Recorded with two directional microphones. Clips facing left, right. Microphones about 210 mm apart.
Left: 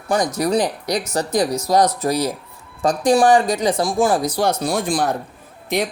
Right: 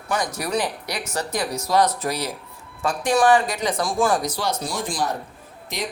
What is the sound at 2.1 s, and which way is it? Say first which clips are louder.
Speech: left 7 dB; 15° left (ahead or behind).